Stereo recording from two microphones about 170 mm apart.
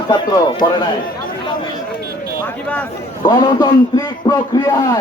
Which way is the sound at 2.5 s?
10° left (ahead or behind).